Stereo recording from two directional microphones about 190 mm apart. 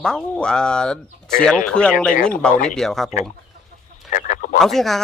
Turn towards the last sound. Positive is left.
turn(degrees=0)  # may be behind; listen again after turning